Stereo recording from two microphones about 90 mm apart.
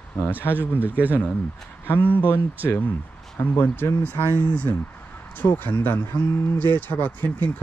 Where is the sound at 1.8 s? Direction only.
20° left (ahead or behind).